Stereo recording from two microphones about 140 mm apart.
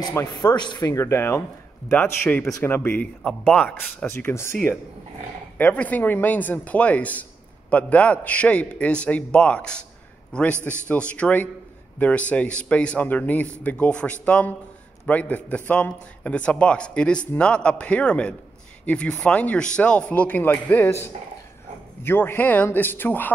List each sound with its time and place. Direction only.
0.3 s speech: 30° left (ahead or behind)
5.6 s speech: 10° left (ahead or behind)